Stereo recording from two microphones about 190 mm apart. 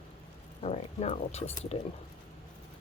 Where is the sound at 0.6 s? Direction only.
35° left (ahead or behind).